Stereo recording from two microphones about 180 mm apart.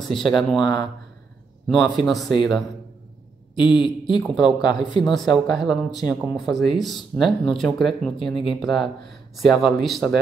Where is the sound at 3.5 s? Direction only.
25° left (ahead or behind).